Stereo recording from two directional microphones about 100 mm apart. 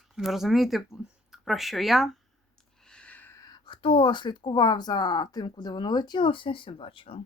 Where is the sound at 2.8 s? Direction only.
10° left (ahead or behind).